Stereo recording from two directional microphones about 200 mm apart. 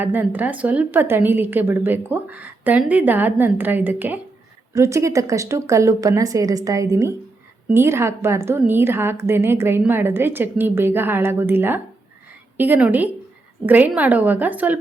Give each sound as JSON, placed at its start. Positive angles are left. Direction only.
{"t": 0.0, "sound": "a woman's voice", "side_deg": -10}